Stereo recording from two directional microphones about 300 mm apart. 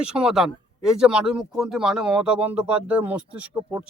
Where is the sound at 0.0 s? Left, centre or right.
Centre.